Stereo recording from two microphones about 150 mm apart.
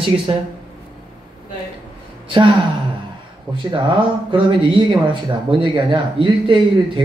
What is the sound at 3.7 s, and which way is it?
Speech, 35° right (ahead or behind).